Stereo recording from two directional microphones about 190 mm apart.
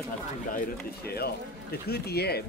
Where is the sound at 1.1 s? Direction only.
55° left (ahead or behind).